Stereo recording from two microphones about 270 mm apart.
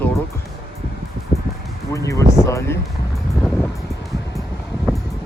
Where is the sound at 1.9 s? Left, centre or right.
Centre.